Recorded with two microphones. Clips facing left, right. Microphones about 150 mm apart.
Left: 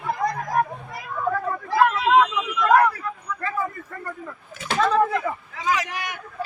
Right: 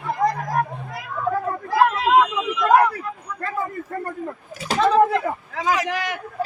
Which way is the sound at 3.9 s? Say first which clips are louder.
Right 6 dB; 40° right (ahead or behind).